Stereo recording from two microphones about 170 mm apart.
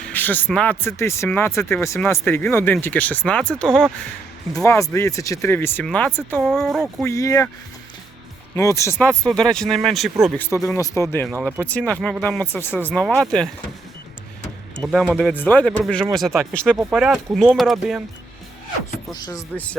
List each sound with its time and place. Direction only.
0.0 s speech: 10° left (ahead or behind)
4.5 s speech: 15° left (ahead or behind)
6.4 s speech: 5° right (ahead or behind)
7.0 s speech: 20° left (ahead or behind)
8.5 s speech: 15° left (ahead or behind)
9.0 s speech: 5° left (ahead or behind)
10.3 s speech: 15° left (ahead or behind)
14.8 s speech: centre (ahead or behind)
15.4 s speech: 10° left (ahead or behind)
19.1 s speech: 20° left (ahead or behind)